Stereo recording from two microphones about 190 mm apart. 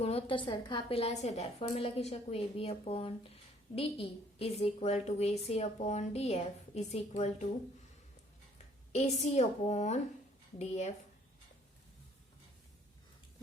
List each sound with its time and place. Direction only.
0.0 s a woman's voice: 30° left (ahead or behind)
8.5 s a woman's voice: 35° left (ahead or behind)